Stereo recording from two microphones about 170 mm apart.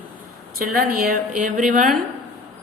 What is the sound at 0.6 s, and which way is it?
Speech, 55° right (ahead or behind).